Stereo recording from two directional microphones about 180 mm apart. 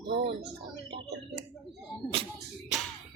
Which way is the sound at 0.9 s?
70° right (ahead or behind).